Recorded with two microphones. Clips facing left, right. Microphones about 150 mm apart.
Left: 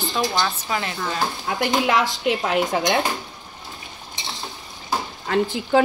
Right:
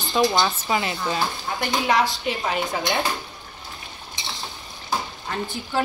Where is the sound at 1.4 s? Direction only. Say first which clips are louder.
Left 4 dB; 90° left.